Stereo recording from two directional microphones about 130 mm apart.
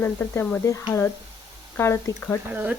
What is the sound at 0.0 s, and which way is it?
Speech, 15° left (ahead or behind).